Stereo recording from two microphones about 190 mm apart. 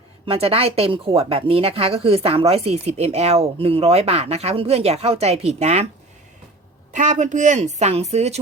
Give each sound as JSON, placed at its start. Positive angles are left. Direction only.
{"t": 0.3, "sound": "speech", "side_deg": -30}
{"t": 6.9, "sound": "speech", "side_deg": -40}